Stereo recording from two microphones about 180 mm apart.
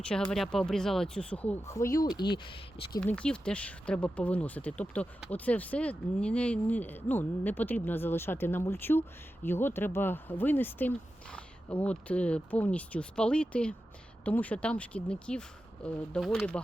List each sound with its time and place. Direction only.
0.1 s speech: 5° left (ahead or behind); by 3.0 s 25° left (ahead or behind)
3.0 s speech: 5° left (ahead or behind)